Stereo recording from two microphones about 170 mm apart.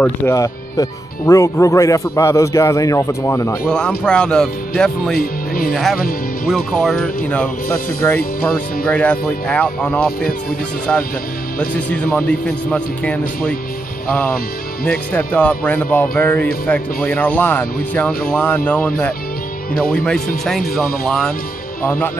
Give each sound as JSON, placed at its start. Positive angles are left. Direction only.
{"t": 0.0, "sound": "speech", "side_deg": 15}
{"t": 3.6, "sound": "speech", "side_deg": 5}
{"t": 5.1, "sound": "speech", "side_deg": 60}
{"t": 5.7, "sound": "speech", "side_deg": 0}
{"t": 8.5, "sound": "speech", "side_deg": 5}
{"t": 11.7, "sound": "speech", "side_deg": 10}
{"t": 14.9, "sound": "speech", "side_deg": 10}